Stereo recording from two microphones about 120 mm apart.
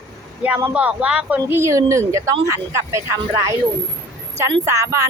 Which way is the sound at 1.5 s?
25° right (ahead or behind).